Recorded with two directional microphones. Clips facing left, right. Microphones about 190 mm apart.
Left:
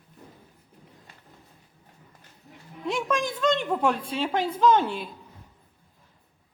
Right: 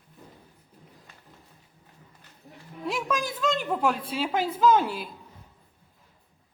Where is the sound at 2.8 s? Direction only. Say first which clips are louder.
Left 2 dB; 5° right (ahead or behind).